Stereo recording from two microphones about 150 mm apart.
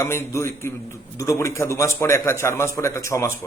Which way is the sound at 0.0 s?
15° left (ahead or behind).